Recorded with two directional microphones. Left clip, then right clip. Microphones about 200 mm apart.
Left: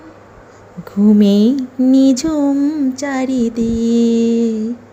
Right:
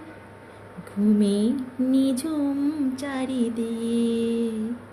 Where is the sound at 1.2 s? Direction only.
40° left (ahead or behind).